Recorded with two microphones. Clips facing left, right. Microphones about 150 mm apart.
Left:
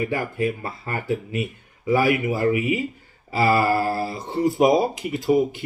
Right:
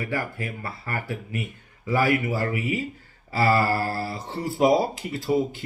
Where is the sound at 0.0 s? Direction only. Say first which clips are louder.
Left 6 dB; 20° left (ahead or behind).